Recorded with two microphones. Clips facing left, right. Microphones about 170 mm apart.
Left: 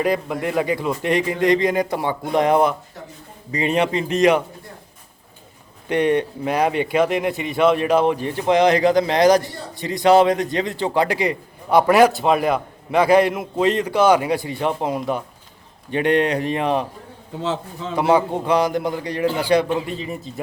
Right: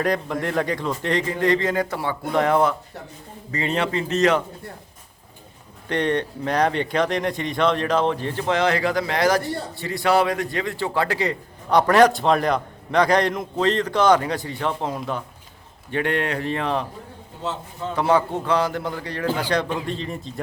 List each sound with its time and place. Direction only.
0.0 s speech: 5° left (ahead or behind)
5.9 s speech: 10° left (ahead or behind)
17.4 s a man's voice: 90° left
17.9 s speech: 15° left (ahead or behind)